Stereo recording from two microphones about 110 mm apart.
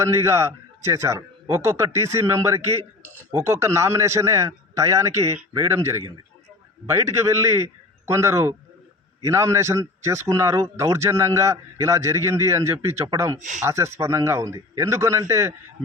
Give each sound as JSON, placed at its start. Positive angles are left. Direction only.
{"t": 0.0, "sound": "a man's voice", "side_deg": -25}